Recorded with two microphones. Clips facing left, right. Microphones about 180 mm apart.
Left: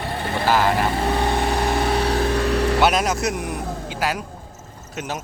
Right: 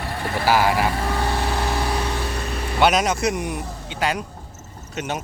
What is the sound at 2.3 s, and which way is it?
Vehicle, 75° left (ahead or behind).